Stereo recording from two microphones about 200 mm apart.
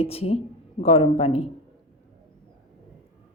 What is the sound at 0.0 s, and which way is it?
A woman's voice, 30° left (ahead or behind).